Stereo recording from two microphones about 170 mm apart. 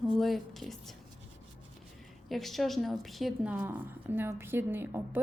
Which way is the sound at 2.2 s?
Centre (ahead or behind).